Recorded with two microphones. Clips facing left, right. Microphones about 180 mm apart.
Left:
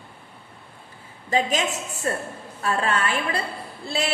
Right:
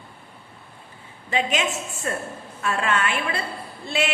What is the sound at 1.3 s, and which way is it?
A woman's voice, 40° left (ahead or behind).